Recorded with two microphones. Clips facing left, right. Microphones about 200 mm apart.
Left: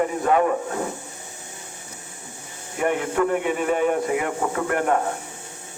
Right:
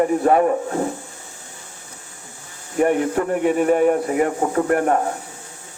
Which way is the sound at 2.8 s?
40° right (ahead or behind).